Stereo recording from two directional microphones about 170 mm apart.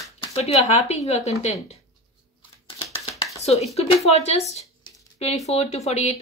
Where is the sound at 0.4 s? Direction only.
40° left (ahead or behind).